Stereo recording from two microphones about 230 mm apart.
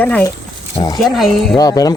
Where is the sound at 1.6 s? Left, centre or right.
Centre.